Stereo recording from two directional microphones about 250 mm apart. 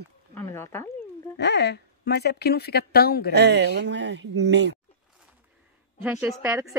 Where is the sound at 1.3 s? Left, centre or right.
Left.